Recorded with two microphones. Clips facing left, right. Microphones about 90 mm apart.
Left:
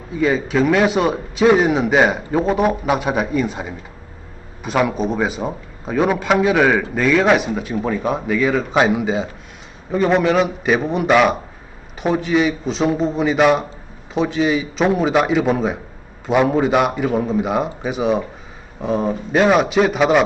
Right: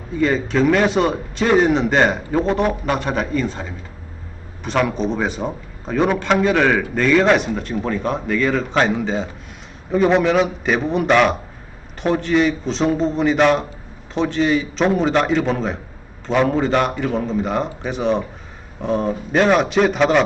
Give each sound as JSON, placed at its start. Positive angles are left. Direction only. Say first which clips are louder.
{"t": 0.1, "sound": "a man's voice", "louder": "left 1 dB", "side_deg": 5}